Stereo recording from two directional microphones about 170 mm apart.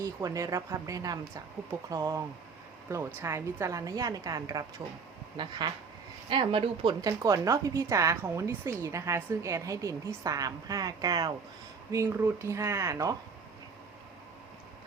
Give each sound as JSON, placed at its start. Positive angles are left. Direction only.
{"t": 0.0, "sound": "a woman's voice", "side_deg": -20}